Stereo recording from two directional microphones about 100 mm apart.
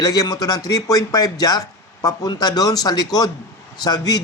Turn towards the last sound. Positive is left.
turn(degrees=40)  # may be behind; listen again after turning